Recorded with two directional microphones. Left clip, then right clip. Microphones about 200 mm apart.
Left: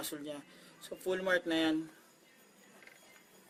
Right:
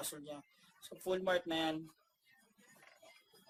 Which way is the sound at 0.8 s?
50° left (ahead or behind).